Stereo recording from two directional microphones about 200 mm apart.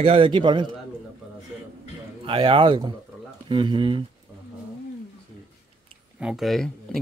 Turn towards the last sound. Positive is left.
turn(degrees=0)  # may be behind; listen again after turning